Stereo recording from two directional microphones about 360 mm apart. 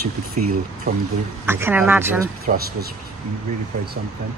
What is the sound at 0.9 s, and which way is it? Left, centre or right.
Speech, right.